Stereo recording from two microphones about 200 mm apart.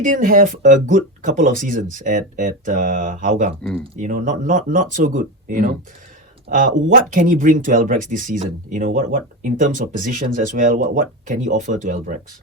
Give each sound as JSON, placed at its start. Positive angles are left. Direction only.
{"t": 0.0, "sound": "speech", "side_deg": -40}
{"t": 6.9, "sound": "speech", "side_deg": -40}